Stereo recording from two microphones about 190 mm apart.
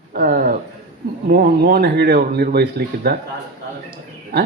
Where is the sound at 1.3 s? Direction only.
50° right (ahead or behind).